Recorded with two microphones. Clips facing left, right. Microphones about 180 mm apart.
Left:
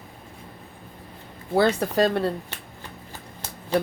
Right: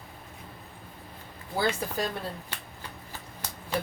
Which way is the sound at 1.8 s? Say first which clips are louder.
Left 10 dB; 70° left (ahead or behind).